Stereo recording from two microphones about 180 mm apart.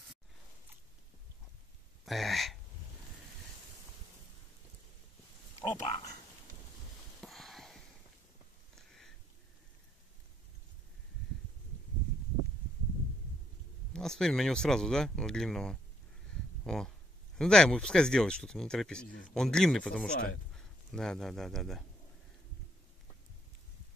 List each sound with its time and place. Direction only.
2.0 s speech: centre (ahead or behind)
5.6 s speech: 30° left (ahead or behind)
7.2 s a sound: centre (ahead or behind)
13.9 s speech: 5° left (ahead or behind)